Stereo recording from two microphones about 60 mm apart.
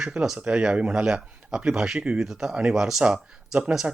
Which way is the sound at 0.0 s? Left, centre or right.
Centre.